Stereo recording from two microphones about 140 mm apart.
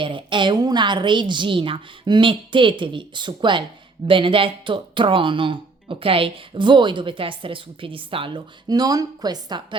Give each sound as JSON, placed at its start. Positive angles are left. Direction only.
{"t": 0.0, "sound": "speech", "side_deg": -35}